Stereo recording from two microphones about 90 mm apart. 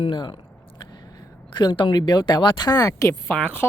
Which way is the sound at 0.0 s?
55° left (ahead or behind).